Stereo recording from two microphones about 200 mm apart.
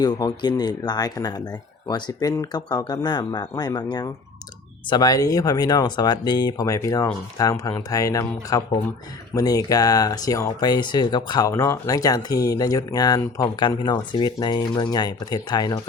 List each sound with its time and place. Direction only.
0.0 s speech: 20° left (ahead or behind)